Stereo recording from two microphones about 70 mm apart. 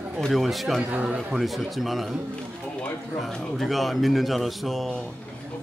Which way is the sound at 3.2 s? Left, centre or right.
Centre.